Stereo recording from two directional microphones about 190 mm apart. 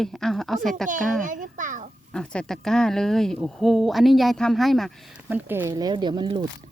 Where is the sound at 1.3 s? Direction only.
45° right (ahead or behind).